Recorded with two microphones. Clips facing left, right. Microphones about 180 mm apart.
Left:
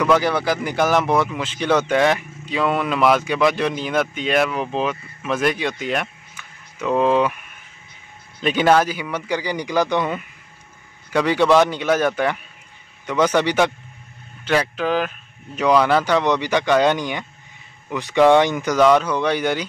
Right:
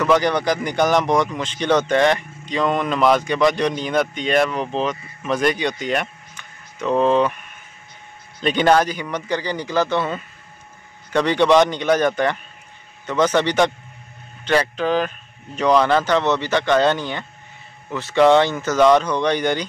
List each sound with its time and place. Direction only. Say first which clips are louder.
0.0 s speech: even; 5° left (ahead or behind)
8.4 s speech: even; 5° left (ahead or behind)